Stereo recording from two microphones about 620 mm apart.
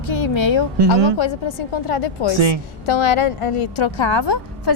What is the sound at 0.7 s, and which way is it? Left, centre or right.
Speech, right.